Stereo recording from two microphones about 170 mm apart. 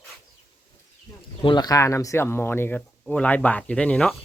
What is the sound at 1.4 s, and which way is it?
Speech, 25° left (ahead or behind).